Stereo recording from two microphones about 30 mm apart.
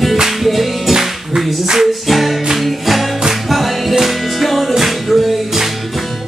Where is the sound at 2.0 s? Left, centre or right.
Centre.